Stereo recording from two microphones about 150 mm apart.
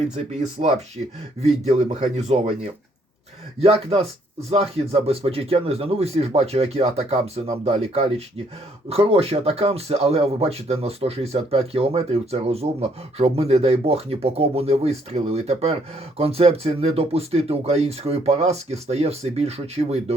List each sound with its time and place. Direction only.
0.6 s speech: 45° right (ahead or behind)
3.6 s speech: 40° right (ahead or behind)